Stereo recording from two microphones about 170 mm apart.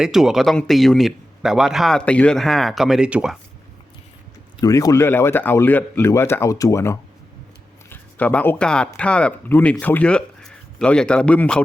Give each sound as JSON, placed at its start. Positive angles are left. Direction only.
{"t": 0.0, "sound": "a man's voice", "side_deg": -5}
{"t": 4.6, "sound": "speech", "side_deg": 20}